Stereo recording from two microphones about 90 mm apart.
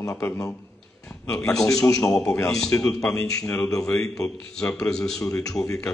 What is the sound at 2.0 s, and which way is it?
A man's voice, 5° left (ahead or behind).